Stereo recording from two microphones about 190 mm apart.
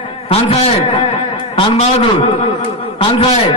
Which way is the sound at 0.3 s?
30° left (ahead or behind).